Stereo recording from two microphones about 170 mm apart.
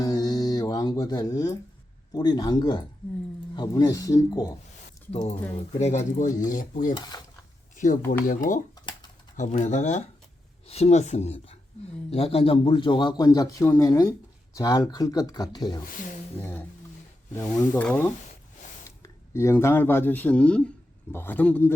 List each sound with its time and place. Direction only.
0.0 s music: 20° left (ahead or behind)
2.1 s a man's voice: 25° left (ahead or behind)
5.8 s speech: 45° left (ahead or behind)
7.1 s cutlery: 20° left (ahead or behind)
8.2 s a man's voice: 50° left (ahead or behind); by 15.8 s 25° left (ahead or behind)
16.4 s speech: 10° left (ahead or behind)